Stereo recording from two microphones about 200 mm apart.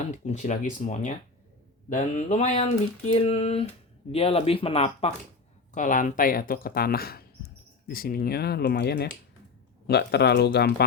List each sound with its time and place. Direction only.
0.1 s a sound: 35° left (ahead or behind)
4.1 s speech: 30° left (ahead or behind)
5.7 s speech: 40° left (ahead or behind)